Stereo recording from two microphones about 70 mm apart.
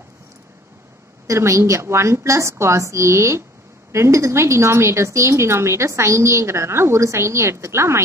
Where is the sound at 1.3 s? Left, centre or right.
Right.